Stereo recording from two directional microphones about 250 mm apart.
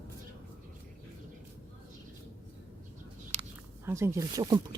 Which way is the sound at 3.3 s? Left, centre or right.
Right.